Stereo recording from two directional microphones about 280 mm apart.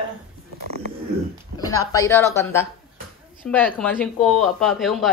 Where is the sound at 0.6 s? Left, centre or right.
Right.